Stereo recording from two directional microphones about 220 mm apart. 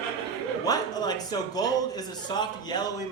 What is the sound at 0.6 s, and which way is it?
A man's voice, 15° left (ahead or behind).